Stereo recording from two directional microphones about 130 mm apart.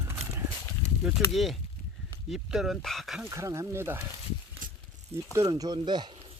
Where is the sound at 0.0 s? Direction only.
20° right (ahead or behind).